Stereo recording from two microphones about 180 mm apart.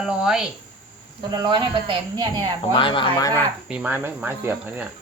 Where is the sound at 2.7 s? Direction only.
30° left (ahead or behind).